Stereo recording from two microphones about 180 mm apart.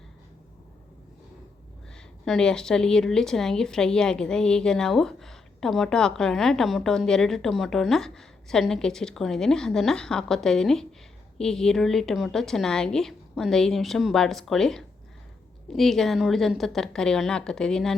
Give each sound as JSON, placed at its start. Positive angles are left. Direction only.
{"t": 2.2, "sound": "speech", "side_deg": 5}